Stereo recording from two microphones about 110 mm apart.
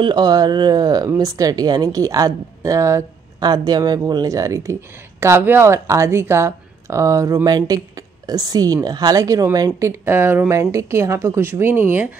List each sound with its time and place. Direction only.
0.0 s a woman's voice: 40° right (ahead or behind); by 12.1 s 20° right (ahead or behind)